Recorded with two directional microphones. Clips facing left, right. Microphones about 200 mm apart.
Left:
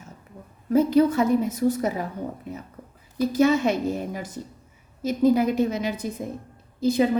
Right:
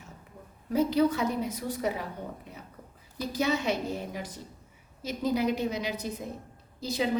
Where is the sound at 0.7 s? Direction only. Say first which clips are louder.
Left 6 dB; 50° left (ahead or behind).